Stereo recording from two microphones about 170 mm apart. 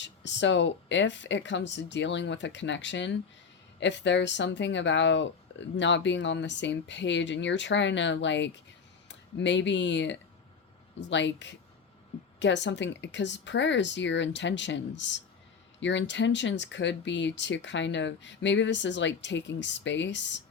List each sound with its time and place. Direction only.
0.0 s speech: 90° left